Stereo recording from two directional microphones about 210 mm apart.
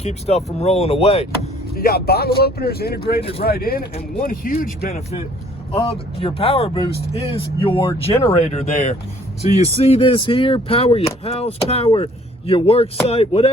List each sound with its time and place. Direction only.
0.0 s speech: 30° left (ahead or behind)
1.7 s speech: 45° left (ahead or behind)
3.2 s speech: 25° left (ahead or behind)
3.4 s speech: 45° left (ahead or behind); by 13.5 s 25° left (ahead or behind)